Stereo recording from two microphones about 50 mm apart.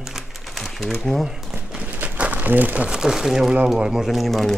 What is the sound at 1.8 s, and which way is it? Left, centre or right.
Crumpling, right.